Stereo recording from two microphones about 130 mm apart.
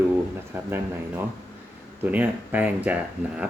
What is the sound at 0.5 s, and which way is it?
Speech, 20° right (ahead or behind).